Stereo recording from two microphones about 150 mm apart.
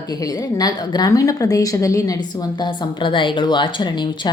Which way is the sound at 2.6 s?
30° left (ahead or behind).